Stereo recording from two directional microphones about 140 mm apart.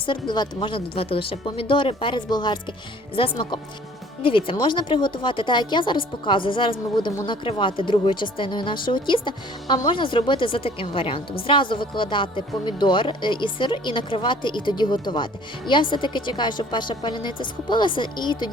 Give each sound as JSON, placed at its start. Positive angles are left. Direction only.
{"t": 0.0, "sound": "speech", "side_deg": 35}